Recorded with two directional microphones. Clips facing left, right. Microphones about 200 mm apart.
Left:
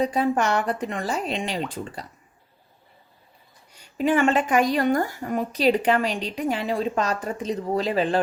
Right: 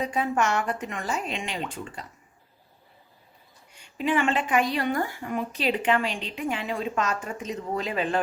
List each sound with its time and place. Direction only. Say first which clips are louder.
0.0 s a woman's voice: left 4 dB; 35° left (ahead or behind)
3.7 s a woman's voice: left 4 dB; 40° left (ahead or behind)